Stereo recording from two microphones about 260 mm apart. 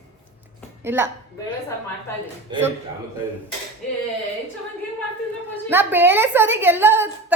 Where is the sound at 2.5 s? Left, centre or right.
Centre.